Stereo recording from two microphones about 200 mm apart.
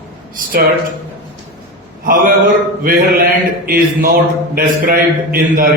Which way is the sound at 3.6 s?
45° right (ahead or behind).